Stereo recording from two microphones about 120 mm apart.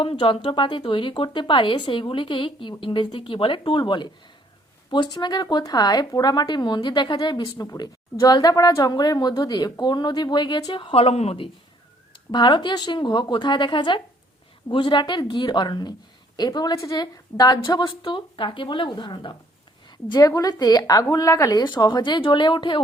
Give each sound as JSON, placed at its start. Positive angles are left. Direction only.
{"t": 0.0, "sound": "a woman's voice", "side_deg": 45}
{"t": 12.3, "sound": "a woman's voice", "side_deg": 40}
{"t": 21.6, "sound": "a woman's voice", "side_deg": 40}